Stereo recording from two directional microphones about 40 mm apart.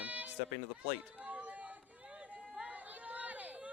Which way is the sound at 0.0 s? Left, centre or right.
Right.